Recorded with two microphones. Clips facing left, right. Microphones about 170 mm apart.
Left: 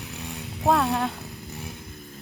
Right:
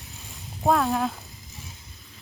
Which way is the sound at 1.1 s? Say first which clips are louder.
Left 8 dB; 65° left (ahead or behind).